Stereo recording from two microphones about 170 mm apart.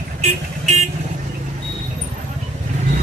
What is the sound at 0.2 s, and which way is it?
Vehicle, 40° right (ahead or behind).